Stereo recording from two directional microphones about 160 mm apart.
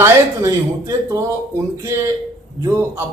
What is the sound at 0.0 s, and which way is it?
Speech, 20° right (ahead or behind).